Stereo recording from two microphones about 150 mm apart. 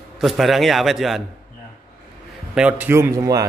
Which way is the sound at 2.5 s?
10° right (ahead or behind).